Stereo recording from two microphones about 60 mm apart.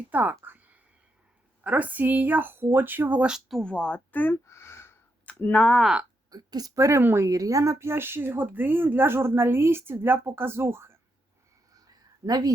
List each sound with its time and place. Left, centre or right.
0.1 s speech: right
1.6 s speech: right
3.2 s speech: centre
3.6 s speech: centre
4.4 s a sound: left
5.5 s speech: centre
6.3 s a woman's voice: right
6.7 s speech: right
7.3 s speech: right
11.7 s a sound: right